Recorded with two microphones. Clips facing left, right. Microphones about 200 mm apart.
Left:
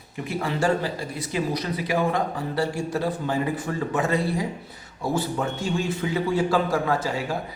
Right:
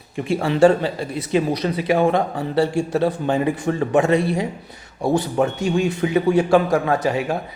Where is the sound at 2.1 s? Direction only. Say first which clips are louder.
Right 6 dB; 30° right (ahead or behind).